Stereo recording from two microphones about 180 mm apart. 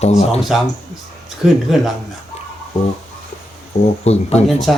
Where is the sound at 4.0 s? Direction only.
35° left (ahead or behind).